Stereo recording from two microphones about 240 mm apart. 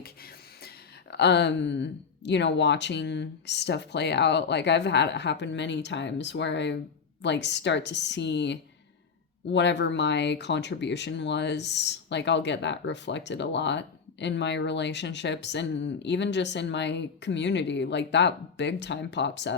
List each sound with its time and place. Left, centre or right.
1.1 s speech: left